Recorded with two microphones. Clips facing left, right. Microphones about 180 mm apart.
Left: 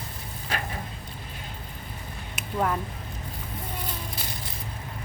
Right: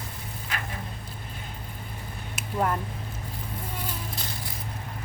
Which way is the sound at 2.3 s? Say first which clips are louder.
Even; centre (ahead or behind).